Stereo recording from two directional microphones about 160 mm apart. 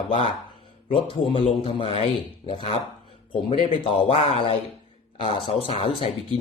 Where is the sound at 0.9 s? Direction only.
35° left (ahead or behind).